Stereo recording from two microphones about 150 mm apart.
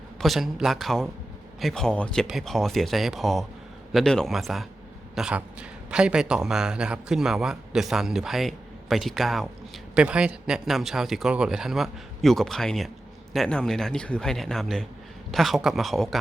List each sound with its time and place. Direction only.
0.2 s a man's voice: centre (ahead or behind)